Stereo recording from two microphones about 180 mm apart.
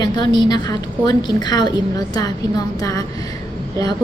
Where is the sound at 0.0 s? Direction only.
25° left (ahead or behind).